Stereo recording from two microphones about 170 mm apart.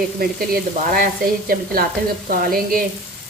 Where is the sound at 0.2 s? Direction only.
60° right (ahead or behind).